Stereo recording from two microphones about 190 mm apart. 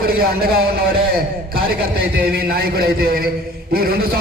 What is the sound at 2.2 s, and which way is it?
A man's voice, 55° right (ahead or behind).